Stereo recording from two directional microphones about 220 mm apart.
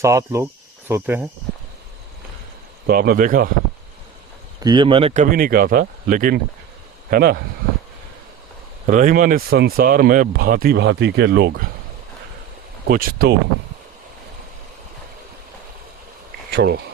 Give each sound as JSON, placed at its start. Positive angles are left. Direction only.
{"t": 0.0, "sound": "speech", "side_deg": -15}
{"t": 2.8, "sound": "speech", "side_deg": -45}
{"t": 4.6, "sound": "speech", "side_deg": -20}
{"t": 8.9, "sound": "speech", "side_deg": -35}
{"t": 12.9, "sound": "speech", "side_deg": -45}
{"t": 16.5, "sound": "speech", "side_deg": -45}